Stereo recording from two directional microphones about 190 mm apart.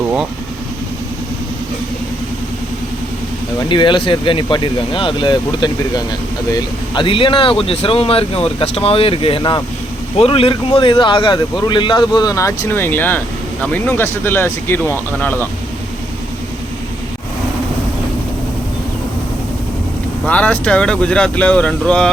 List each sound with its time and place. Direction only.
3.7 s speech: 25° left (ahead or behind)
20.2 s speech: 5° left (ahead or behind)